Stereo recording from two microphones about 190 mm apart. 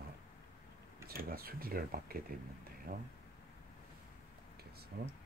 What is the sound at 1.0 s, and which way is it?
Speech, 50° right (ahead or behind).